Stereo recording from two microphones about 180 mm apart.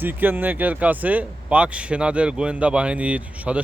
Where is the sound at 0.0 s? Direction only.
10° right (ahead or behind).